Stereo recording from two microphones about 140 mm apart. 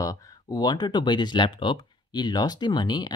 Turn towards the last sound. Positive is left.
turn(degrees=30)  # may be behind; listen again after turning